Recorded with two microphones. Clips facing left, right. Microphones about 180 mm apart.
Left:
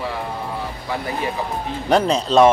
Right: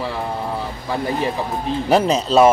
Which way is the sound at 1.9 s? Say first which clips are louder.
Even; 5° right (ahead or behind).